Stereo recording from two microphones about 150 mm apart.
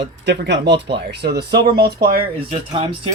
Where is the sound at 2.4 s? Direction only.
40° right (ahead or behind).